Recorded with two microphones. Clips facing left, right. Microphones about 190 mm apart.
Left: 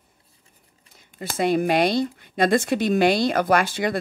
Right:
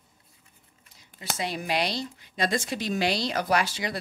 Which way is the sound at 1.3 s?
55° left (ahead or behind).